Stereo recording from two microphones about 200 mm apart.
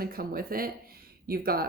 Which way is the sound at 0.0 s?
50° right (ahead or behind).